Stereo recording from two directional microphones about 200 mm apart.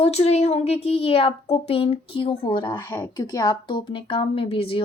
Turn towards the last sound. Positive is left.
turn(degrees=25)  # may be behind; listen again after turning